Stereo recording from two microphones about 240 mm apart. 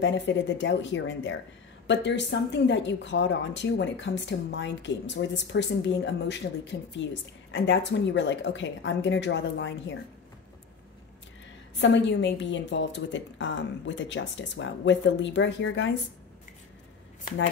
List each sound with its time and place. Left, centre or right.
0.0 s a woman's voice: left
11.8 s a woman's voice: left